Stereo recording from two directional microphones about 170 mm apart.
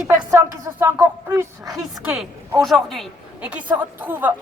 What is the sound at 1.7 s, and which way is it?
A woman's voice, centre (ahead or behind).